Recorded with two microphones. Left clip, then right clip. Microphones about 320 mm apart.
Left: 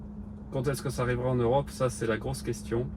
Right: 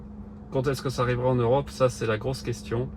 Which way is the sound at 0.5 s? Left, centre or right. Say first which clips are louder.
Right 5 dB; right.